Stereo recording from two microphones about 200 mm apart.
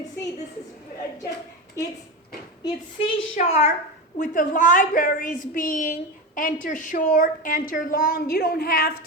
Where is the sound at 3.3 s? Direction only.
30° left (ahead or behind).